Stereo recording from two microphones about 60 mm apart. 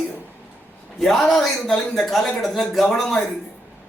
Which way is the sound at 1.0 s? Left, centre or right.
Centre.